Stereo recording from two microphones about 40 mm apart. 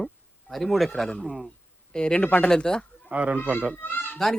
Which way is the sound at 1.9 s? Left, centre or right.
Left.